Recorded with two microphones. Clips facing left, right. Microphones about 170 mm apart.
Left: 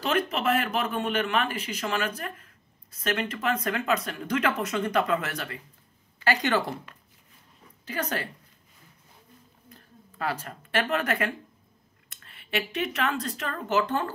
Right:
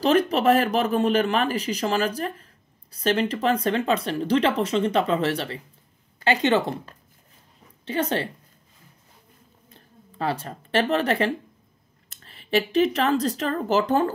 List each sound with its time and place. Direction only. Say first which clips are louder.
0.0 s speech: right 7 dB; 35° right (ahead or behind)
7.8 s speech: right 6 dB; 25° right (ahead or behind)
9.7 s speech: even; 25° right (ahead or behind)